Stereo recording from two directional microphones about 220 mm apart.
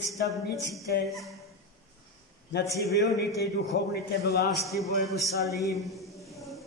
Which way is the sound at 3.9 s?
45° left (ahead or behind).